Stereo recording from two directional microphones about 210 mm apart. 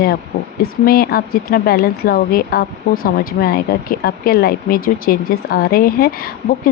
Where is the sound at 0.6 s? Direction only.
45° left (ahead or behind).